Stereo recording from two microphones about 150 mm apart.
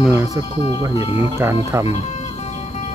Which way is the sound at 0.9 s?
40° left (ahead or behind).